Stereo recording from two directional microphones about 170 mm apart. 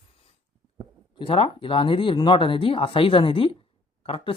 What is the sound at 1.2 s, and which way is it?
Speech, 35° left (ahead or behind).